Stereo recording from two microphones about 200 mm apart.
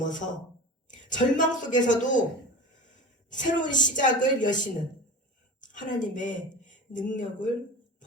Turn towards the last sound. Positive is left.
turn(degrees=40)  # may be behind; listen again after turning